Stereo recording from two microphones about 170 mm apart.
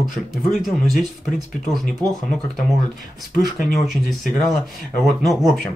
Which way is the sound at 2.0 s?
10° left (ahead or behind).